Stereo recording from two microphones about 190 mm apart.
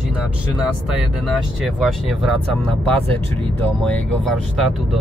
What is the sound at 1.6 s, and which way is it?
Speech, centre (ahead or behind).